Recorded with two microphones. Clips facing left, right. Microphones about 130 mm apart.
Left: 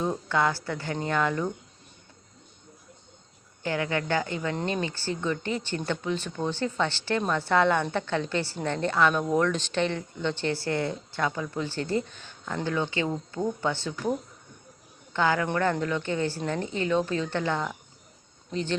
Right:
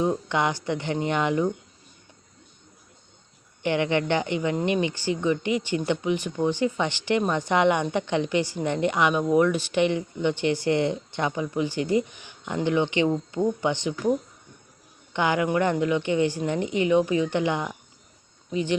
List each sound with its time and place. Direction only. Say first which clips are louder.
0.0 s speech: right 2 dB; 20° right (ahead or behind)
3.6 s speech: right 5 dB; 20° right (ahead or behind)
15.1 s speech: right 2 dB; 20° right (ahead or behind)